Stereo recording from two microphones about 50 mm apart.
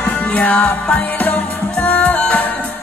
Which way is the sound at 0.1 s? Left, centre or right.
Left.